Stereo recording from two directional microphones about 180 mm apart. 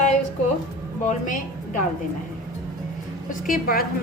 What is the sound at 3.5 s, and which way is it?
Speech, 55° left (ahead or behind).